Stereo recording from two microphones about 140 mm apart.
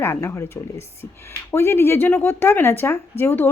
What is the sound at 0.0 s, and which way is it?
A woman's voice, 15° left (ahead or behind).